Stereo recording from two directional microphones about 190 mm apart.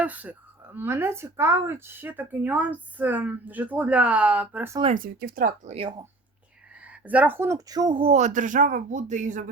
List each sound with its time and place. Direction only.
0.0 s speech: 10° right (ahead or behind)
4.9 s speech: 50° right (ahead or behind)
6.7 s speech: 5° right (ahead or behind); by 9.5 s 40° right (ahead or behind)